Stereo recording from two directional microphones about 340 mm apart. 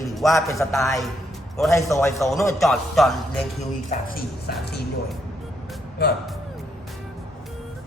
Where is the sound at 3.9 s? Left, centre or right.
Left.